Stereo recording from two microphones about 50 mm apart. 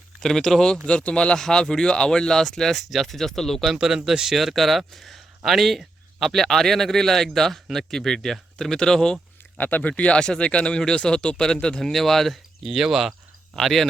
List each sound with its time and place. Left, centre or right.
0.2 s speech: centre
1.4 s speech: centre
3.7 s a man's voice: centre
9.6 s speech: left; by 11.9 s centre
11.9 s a man's voice: centre
12.6 s a man's voice: centre